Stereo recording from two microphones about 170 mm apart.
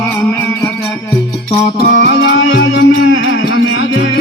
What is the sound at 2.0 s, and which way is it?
Music, 90° left.